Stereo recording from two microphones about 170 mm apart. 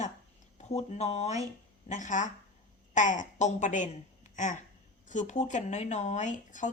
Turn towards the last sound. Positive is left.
turn(degrees=50)  # may be behind; listen again after turning